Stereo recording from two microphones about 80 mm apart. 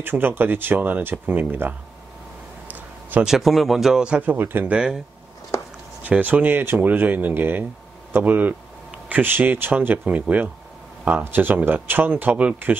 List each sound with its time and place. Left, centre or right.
0.0 s speech: right
2.7 s a sound: right
3.3 s speech: centre; by 4.7 s right
4.7 s speech: centre
5.5 s a sound: left
6.0 s speech: centre